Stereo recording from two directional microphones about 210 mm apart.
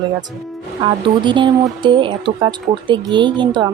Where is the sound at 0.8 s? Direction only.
25° right (ahead or behind).